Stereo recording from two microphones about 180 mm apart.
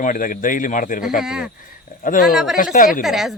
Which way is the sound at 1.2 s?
Centre (ahead or behind).